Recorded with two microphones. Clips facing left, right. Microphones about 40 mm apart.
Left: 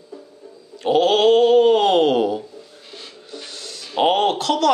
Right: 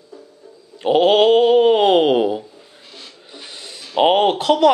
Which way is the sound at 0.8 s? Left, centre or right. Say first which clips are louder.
Right 2 dB; centre.